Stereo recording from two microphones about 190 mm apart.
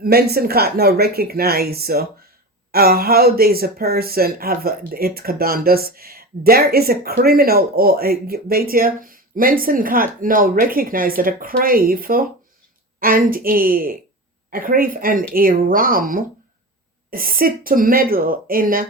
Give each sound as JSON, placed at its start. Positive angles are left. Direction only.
{"t": 0.0, "sound": "a woman's voice", "side_deg": -55}